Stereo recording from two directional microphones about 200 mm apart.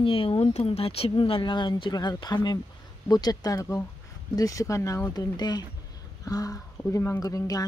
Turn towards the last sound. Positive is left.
turn(degrees=20)  # may be behind; listen again after turning